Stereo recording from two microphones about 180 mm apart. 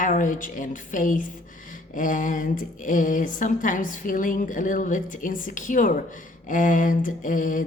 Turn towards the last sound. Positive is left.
turn(degrees=45)  # may be behind; listen again after turning